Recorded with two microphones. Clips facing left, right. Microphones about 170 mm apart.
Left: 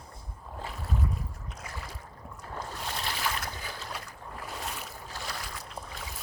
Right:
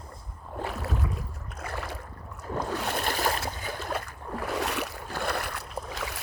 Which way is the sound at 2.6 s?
75° right (ahead or behind).